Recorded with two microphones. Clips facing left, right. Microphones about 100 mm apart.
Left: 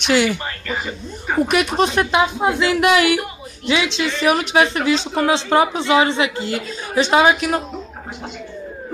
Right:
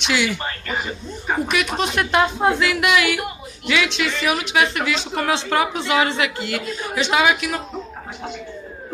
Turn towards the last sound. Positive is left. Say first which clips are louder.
# left 4 dB
turn(degrees=40)  # may be behind; listen again after turning